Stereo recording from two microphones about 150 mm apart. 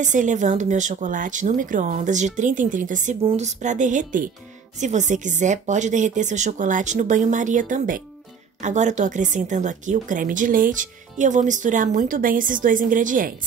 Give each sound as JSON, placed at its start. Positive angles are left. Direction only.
{"t": 0.0, "sound": "a woman's voice", "side_deg": -55}
{"t": 3.2, "sound": "a woman's voice", "side_deg": -45}